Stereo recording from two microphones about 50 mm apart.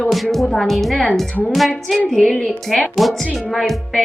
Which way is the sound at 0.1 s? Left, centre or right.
Centre.